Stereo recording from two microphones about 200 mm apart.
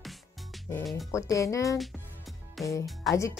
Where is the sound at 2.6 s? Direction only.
Centre (ahead or behind).